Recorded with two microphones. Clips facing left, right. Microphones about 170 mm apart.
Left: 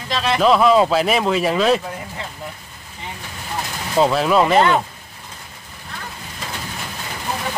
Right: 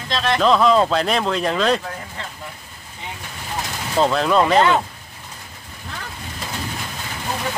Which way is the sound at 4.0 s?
5° left (ahead or behind).